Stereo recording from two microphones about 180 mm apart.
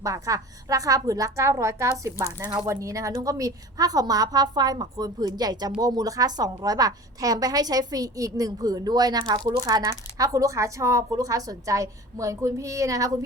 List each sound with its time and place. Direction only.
0.0 s a woman's voice: 20° right (ahead or behind)